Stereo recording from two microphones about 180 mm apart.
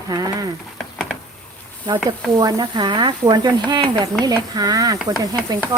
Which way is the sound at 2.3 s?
25° right (ahead or behind).